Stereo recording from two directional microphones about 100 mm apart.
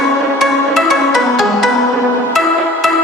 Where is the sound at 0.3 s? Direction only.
Centre (ahead or behind).